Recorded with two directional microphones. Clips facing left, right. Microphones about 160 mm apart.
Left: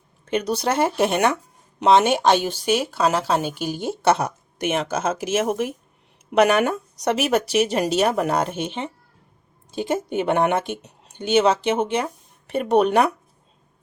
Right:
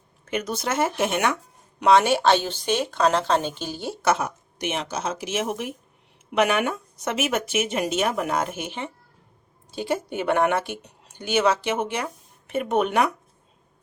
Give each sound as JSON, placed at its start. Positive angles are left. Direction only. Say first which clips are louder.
{"t": 0.3, "sound": "speech", "louder": "left 5 dB", "side_deg": 30}
{"t": 1.8, "sound": "speech", "louder": "left 2 dB", "side_deg": 20}
{"t": 4.0, "sound": "speech", "louder": "left 3 dB", "side_deg": 35}
{"t": 4.5, "sound": "speech", "louder": "left 6 dB", "side_deg": 50}